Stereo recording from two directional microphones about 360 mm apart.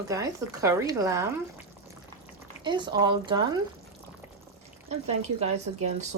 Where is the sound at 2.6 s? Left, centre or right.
Centre.